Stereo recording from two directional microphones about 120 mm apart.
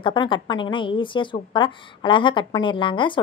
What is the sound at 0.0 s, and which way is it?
A woman's voice, 40° left (ahead or behind).